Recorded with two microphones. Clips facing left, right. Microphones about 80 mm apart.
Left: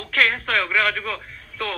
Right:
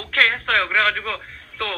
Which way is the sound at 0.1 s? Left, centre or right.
Right.